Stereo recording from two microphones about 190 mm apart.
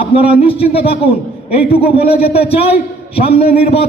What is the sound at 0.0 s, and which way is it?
A man's voice, 30° left (ahead or behind).